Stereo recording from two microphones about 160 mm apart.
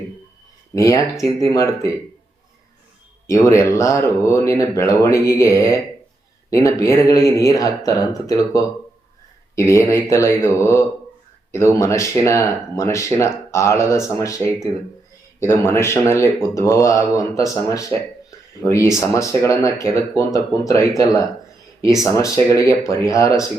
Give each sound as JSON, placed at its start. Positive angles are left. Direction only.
{"t": 0.7, "sound": "speech", "side_deg": 20}
{"t": 3.2, "sound": "speech", "side_deg": 20}